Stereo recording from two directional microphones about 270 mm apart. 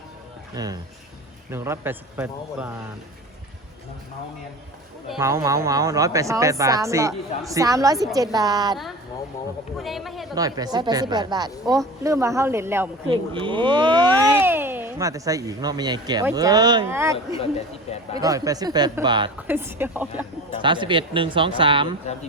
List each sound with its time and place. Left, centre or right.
0.5 s speech: centre
5.0 s speech: centre
9.7 s speech: centre
10.3 s speech: centre
18.2 s speech: centre
20.6 s speech: centre